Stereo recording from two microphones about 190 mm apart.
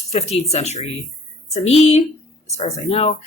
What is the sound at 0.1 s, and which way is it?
Speech, 35° left (ahead or behind).